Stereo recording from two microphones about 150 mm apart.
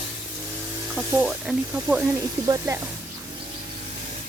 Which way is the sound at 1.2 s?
5° right (ahead or behind).